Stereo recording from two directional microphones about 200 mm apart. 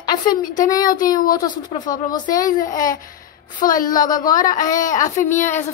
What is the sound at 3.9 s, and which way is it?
Speech, 20° left (ahead or behind).